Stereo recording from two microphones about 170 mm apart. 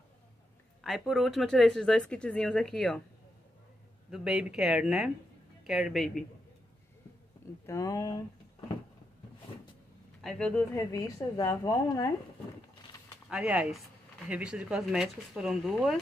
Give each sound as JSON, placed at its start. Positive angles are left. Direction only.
{"t": 0.8, "sound": "a woman's voice", "side_deg": 0}
{"t": 4.1, "sound": "a woman's voice", "side_deg": -5}
{"t": 7.6, "sound": "speech", "side_deg": 20}
{"t": 10.2, "sound": "a woman's voice", "side_deg": 5}
{"t": 10.8, "sound": "a woman's voice", "side_deg": 20}
{"t": 13.3, "sound": "a woman's voice", "side_deg": -5}